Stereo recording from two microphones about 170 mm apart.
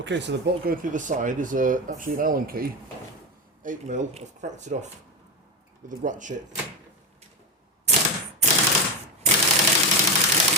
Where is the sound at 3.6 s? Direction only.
50° right (ahead or behind).